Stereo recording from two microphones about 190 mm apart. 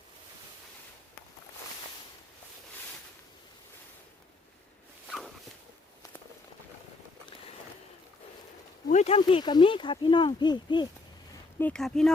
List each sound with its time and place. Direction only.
5.0 s walk: centre (ahead or behind)
8.9 s speech: 35° left (ahead or behind)
11.6 s speech: 5° left (ahead or behind)